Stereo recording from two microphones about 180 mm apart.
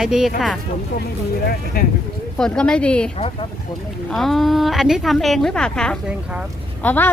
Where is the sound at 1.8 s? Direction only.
55° left (ahead or behind).